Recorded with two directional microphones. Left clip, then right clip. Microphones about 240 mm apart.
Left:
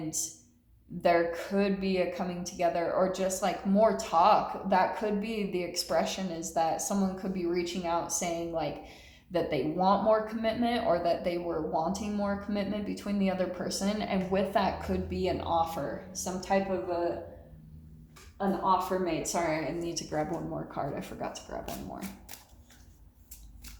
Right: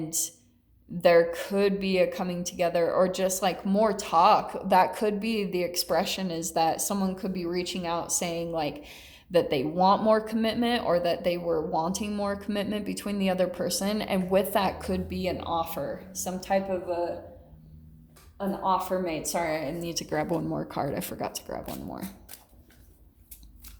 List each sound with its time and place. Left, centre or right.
1.0 s speech: right
18.3 s speech: right